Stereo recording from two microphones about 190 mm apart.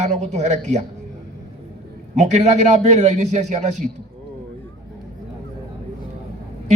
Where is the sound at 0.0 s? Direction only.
40° right (ahead or behind).